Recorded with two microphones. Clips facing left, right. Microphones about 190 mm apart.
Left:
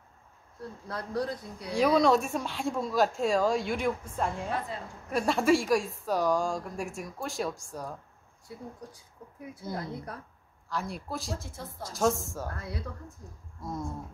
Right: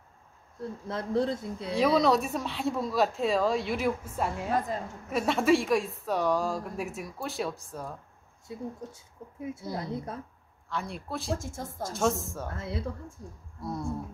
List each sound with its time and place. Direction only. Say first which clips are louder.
0.8 s speech: right 4 dB; 25° right (ahead or behind)
1.7 s speech: left 1 dB; centre (ahead or behind)
8.5 s speech: right 5 dB; 25° right (ahead or behind)
10.7 s speech: even; centre (ahead or behind)
11.3 s speech: right 4 dB; 45° right (ahead or behind)
11.9 s speech: left 1 dB; centre (ahead or behind)
12.4 s speech: right 3 dB; 25° right (ahead or behind)